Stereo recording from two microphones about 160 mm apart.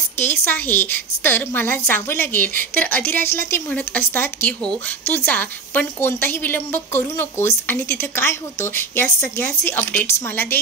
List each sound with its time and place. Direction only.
0.2 s a woman's voice: 10° left (ahead or behind)